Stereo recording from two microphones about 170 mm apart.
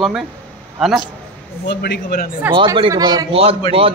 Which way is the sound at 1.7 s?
70° left (ahead or behind).